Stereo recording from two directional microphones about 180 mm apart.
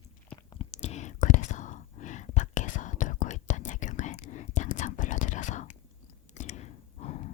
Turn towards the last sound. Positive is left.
turn(degrees=40)  # may be behind; listen again after turning